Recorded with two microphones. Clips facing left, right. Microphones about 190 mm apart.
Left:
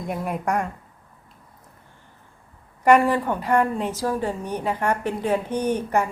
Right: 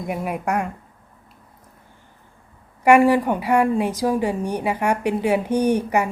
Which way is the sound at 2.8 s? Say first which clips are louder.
Right 3 dB; 10° right (ahead or behind).